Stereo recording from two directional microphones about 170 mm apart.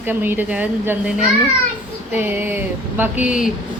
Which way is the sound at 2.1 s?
10° right (ahead or behind).